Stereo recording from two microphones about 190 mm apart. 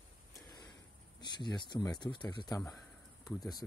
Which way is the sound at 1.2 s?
25° left (ahead or behind).